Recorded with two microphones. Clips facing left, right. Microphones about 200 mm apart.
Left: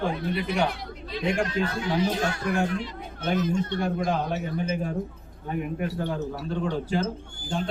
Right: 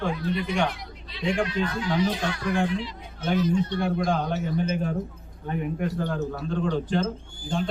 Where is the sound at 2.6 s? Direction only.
50° left (ahead or behind).